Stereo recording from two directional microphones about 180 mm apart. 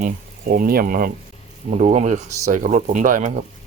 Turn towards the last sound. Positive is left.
turn(degrees=-45)  # may be behind; listen again after turning